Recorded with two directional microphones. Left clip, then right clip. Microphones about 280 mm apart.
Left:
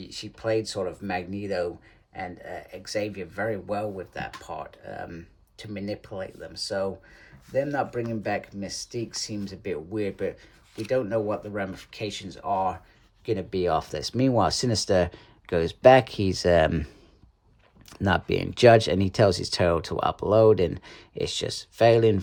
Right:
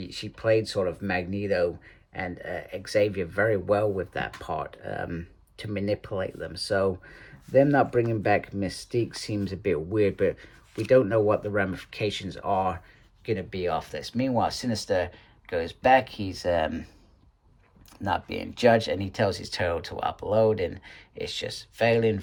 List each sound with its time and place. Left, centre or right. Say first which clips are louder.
0.0 s speech: right 3 dB; centre
13.2 s speech: left 3 dB; centre
18.0 s speech: left 4 dB; left